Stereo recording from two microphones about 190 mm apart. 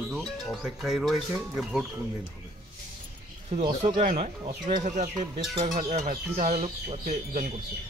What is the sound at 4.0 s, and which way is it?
Speech, 40° right (ahead or behind).